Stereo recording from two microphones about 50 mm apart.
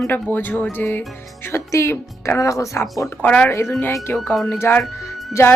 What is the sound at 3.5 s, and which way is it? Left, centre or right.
Speech, left.